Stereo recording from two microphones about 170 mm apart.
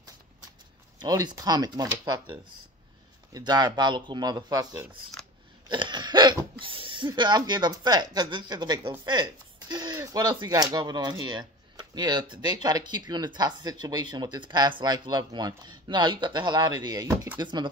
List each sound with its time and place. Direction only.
1.0 s speech: 20° right (ahead or behind)
3.3 s speech: 25° right (ahead or behind)